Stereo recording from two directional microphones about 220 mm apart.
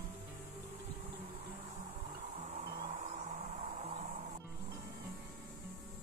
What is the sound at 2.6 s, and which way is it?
Music, 40° right (ahead or behind).